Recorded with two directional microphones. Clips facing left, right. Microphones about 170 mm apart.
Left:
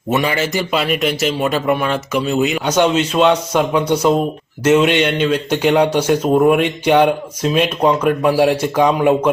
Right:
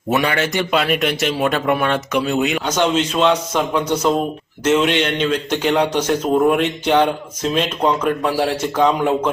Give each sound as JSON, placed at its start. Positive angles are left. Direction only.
{"t": 0.1, "sound": "a man's voice", "side_deg": 0}